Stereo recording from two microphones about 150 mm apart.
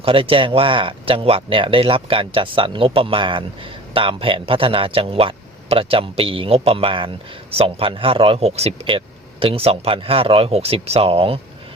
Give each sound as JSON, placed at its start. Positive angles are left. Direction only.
{"t": 0.0, "sound": "speech", "side_deg": -35}